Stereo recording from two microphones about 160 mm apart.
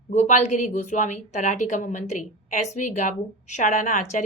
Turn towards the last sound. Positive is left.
turn(degrees=50)  # may be behind; listen again after turning